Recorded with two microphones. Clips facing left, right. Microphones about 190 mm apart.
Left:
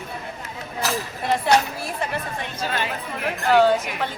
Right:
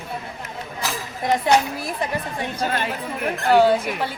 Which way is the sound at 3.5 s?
10° right (ahead or behind).